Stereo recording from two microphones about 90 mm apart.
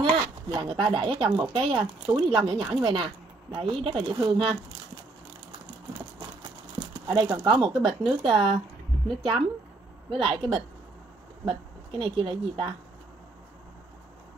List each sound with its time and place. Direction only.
0.0 s speech: 75° right (ahead or behind)
7.1 s speech: 50° right (ahead or behind)
7.4 s speech: 65° right (ahead or behind)
12.0 s speech: 70° right (ahead or behind)